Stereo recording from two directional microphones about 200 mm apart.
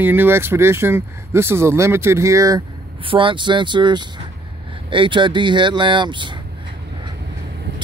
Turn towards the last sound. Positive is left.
turn(degrees=-25)  # may be behind; listen again after turning